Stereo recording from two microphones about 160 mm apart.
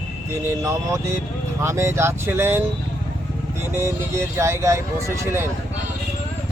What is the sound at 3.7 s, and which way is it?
Speech, 15° right (ahead or behind).